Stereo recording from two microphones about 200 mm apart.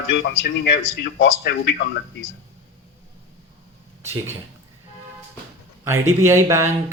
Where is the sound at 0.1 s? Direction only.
60° left (ahead or behind).